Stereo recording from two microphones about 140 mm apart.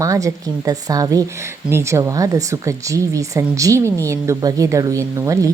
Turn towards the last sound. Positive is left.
turn(degrees=-25)  # may be behind; listen again after turning